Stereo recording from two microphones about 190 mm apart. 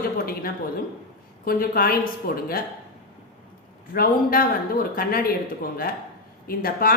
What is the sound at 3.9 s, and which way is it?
Speech, 50° left (ahead or behind).